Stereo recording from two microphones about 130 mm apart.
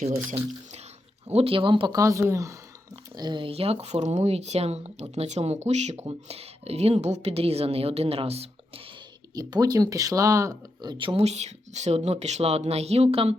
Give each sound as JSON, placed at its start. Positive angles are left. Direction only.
{"t": 1.3, "sound": "speech", "side_deg": -50}
{"t": 2.0, "sound": "speech", "side_deg": -25}
{"t": 3.2, "sound": "speech", "side_deg": -35}
{"t": 9.3, "sound": "speech", "side_deg": -30}